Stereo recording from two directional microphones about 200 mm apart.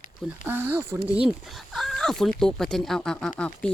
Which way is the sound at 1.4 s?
Centre (ahead or behind).